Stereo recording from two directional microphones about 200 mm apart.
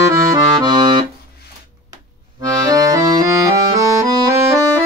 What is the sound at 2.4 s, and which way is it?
Accordion, 20° right (ahead or behind).